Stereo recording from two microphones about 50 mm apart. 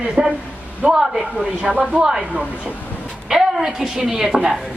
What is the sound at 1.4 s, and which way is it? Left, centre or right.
Speech, right.